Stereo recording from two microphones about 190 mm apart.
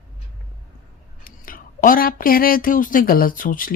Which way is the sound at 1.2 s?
50° left (ahead or behind).